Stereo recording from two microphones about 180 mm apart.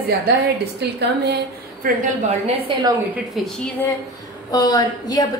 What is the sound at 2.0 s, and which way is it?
Speech, 40° right (ahead or behind).